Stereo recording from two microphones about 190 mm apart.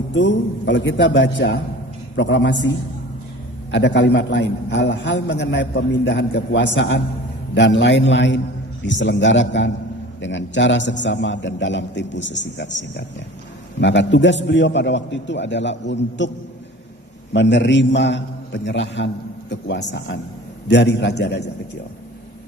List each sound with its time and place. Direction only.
0.1 s a man's voice: 70° left (ahead or behind)
17.3 s a man's voice: 70° left (ahead or behind)